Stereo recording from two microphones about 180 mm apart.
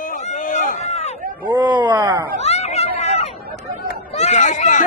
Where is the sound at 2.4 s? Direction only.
35° left (ahead or behind).